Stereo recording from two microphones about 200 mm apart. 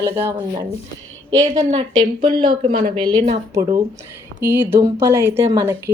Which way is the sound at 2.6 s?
45° right (ahead or behind).